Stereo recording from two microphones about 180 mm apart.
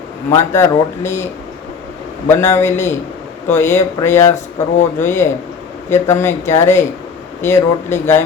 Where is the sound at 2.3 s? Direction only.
15° left (ahead or behind).